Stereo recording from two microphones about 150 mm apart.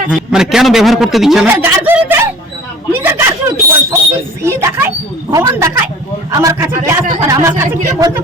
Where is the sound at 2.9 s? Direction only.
15° right (ahead or behind).